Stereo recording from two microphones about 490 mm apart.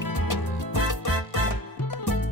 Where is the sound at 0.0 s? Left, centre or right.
Left.